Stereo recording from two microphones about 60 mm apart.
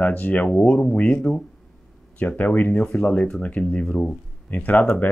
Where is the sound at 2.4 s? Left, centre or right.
Left.